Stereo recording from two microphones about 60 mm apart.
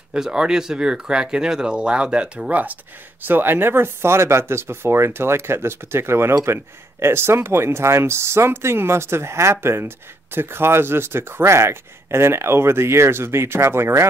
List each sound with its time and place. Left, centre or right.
0.1 s speech: centre; by 14.0 s right